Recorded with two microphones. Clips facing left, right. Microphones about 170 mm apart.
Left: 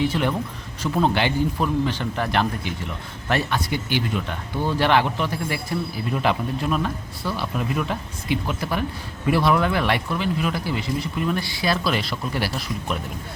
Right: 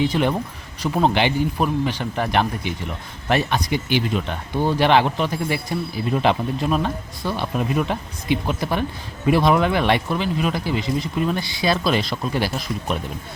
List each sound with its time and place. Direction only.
0.0 s speech: 20° right (ahead or behind)